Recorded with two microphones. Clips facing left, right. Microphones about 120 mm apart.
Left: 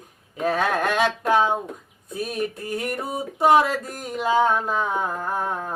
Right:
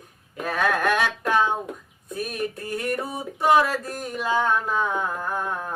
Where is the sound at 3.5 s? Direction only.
20° left (ahead or behind).